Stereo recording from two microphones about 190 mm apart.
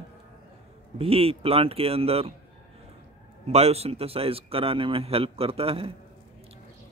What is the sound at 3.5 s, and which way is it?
Speech, 35° right (ahead or behind).